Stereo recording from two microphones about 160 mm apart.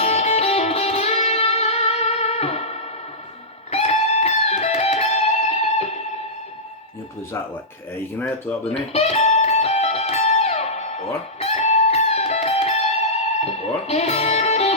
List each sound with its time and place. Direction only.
0.0 s music: 40° left (ahead or behind)
8.7 s music: 40° left (ahead or behind)